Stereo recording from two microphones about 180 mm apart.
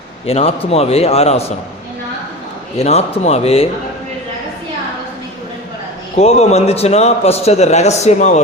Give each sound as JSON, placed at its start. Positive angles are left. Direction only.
{"t": 0.3, "sound": "a man's voice", "side_deg": 35}
{"t": 2.7, "sound": "a man's voice", "side_deg": 35}
{"t": 6.1, "sound": "a man's voice", "side_deg": 35}